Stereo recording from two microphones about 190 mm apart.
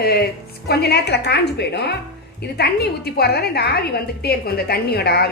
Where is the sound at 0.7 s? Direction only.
60° left (ahead or behind).